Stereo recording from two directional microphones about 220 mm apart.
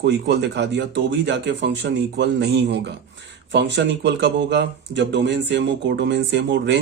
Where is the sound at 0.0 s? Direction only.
50° right (ahead or behind).